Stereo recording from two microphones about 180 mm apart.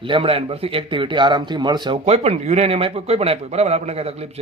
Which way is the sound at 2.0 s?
35° right (ahead or behind).